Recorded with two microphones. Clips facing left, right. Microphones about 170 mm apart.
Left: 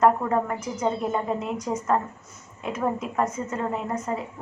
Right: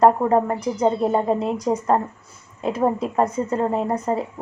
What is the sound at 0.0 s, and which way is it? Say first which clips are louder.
A woman's voice: right 5 dB; 35° right (ahead or behind).